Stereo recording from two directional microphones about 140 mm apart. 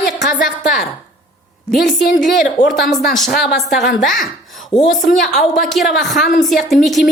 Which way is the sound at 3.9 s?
75° left (ahead or behind).